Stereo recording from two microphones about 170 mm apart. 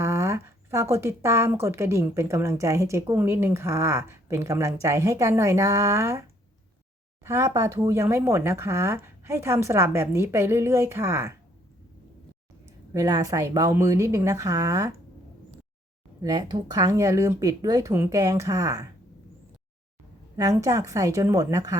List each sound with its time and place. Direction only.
0.0 s a sound: 15° right (ahead or behind)
1.6 s a woman's voice: 15° right (ahead or behind)
7.3 s a woman's voice: 15° right (ahead or behind)
12.9 s speech: 20° right (ahead or behind)
16.2 s speech: 25° right (ahead or behind)
20.3 s speech: 20° right (ahead or behind)